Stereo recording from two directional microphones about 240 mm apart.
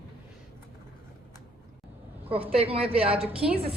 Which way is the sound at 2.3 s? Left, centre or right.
Right.